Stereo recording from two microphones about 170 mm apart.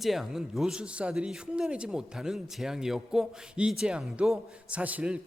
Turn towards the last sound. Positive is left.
turn(degrees=-10)  # may be behind; listen again after turning